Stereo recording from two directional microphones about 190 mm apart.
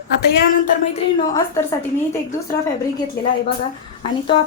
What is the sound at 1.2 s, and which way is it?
Speech, 15° left (ahead or behind).